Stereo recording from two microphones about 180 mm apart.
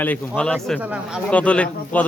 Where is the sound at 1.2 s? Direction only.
5° left (ahead or behind).